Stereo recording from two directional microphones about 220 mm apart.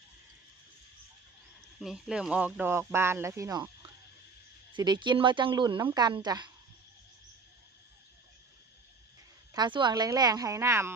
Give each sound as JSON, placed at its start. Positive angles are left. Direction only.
{"t": 1.8, "sound": "speech", "side_deg": -5}
{"t": 9.5, "sound": "speech", "side_deg": -20}